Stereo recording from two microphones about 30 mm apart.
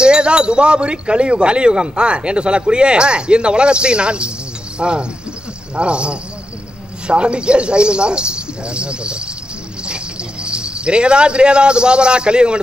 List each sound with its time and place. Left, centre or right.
0.0 s speech: right